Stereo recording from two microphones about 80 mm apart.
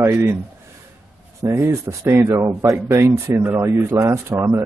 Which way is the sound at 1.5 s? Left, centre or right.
Right.